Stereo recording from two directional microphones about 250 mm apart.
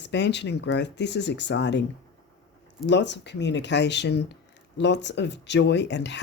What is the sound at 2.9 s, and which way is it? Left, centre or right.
Speech, left.